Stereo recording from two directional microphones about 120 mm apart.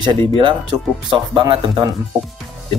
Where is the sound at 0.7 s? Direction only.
35° right (ahead or behind).